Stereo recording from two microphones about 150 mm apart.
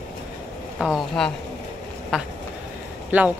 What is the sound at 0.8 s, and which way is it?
Speech, centre (ahead or behind).